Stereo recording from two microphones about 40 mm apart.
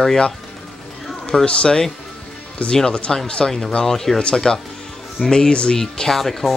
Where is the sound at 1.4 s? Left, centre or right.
Left; by 4.2 s centre.